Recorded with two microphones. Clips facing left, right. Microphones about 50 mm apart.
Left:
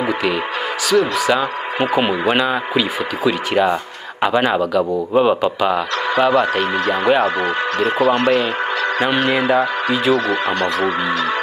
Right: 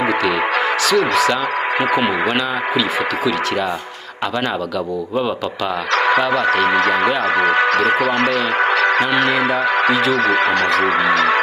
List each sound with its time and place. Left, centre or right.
0.8 s speech: centre
7.4 s speech: right
9.0 s speech: centre
10.1 s speech: right